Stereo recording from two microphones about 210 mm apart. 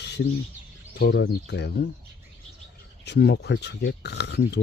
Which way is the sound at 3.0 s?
50° left (ahead or behind).